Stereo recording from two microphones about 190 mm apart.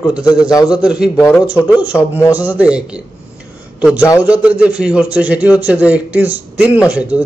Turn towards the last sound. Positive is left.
turn(degrees=-5)  # may be behind; listen again after turning